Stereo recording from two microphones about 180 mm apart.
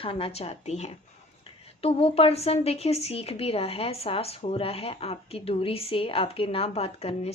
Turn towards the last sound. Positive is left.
turn(degrees=35)  # may be behind; listen again after turning